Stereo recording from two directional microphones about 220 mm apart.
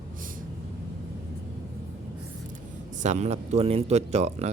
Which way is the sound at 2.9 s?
35° right (ahead or behind).